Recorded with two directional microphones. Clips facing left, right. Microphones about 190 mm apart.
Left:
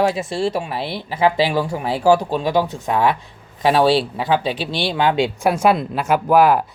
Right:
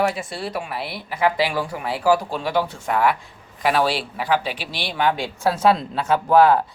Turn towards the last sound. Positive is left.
turn(degrees=10)  # may be behind; listen again after turning